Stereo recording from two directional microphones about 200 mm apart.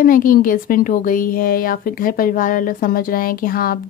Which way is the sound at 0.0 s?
45° left (ahead or behind).